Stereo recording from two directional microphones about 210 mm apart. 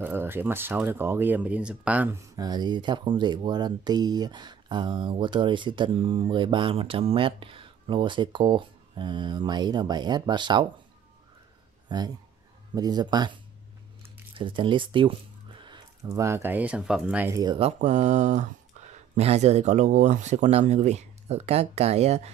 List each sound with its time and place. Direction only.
0.0 s speech: 10° right (ahead or behind)
11.9 s speech: 20° right (ahead or behind)
14.4 s speech: 25° right (ahead or behind); by 17.4 s 5° right (ahead or behind)
17.4 s speech: 25° right (ahead or behind)